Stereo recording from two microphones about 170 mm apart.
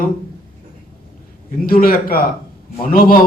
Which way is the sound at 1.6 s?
60° left (ahead or behind).